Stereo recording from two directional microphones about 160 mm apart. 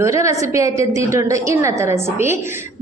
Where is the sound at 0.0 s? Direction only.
20° right (ahead or behind).